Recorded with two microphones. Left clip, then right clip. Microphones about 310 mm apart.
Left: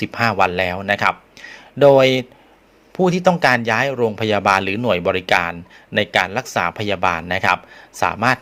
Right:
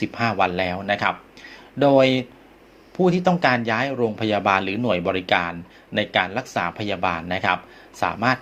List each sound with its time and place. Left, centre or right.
0.0 s speech: left